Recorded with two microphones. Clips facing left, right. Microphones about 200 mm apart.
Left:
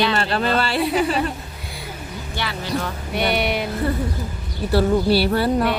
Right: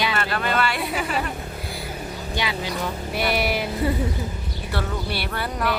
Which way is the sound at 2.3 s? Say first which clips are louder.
Right 1 dB; 15° right (ahead or behind).